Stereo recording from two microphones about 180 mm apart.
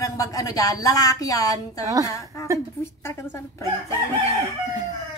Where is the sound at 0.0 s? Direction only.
20° left (ahead or behind).